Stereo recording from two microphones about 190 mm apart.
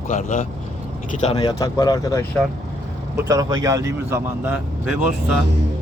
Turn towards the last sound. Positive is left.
turn(degrees=-5)  # may be behind; listen again after turning